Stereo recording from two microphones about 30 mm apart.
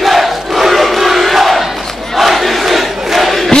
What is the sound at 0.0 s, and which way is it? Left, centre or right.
Crowd, centre.